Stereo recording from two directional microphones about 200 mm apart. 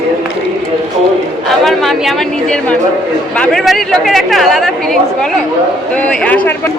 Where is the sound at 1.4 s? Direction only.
Centre (ahead or behind).